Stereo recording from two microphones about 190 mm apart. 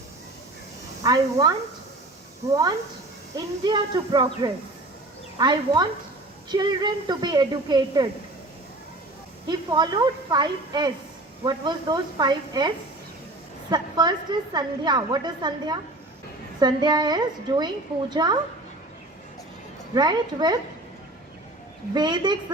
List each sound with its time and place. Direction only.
1.0 s speech: 20° right (ahead or behind)
3.3 s a woman's voice: 20° right (ahead or behind)
9.5 s a woman's voice: 20° right (ahead or behind)
19.9 s a woman's voice: 20° right (ahead or behind)
21.9 s a woman's voice: 20° right (ahead or behind)